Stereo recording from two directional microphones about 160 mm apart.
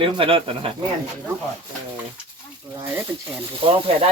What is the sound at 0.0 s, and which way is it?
Speech, 35° right (ahead or behind).